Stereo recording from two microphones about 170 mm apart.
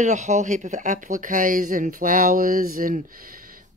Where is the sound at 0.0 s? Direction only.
45° right (ahead or behind).